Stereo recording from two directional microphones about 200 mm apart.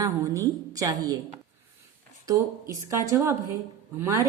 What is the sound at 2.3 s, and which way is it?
A woman's voice, 15° right (ahead or behind).